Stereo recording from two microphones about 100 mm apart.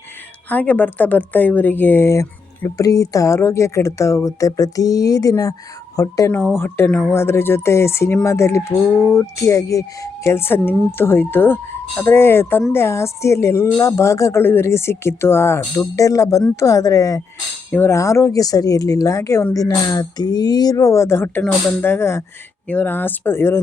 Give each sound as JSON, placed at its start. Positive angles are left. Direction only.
{"t": 0.5, "sound": "speech", "side_deg": 15}
{"t": 6.6, "sound": "speech", "side_deg": 25}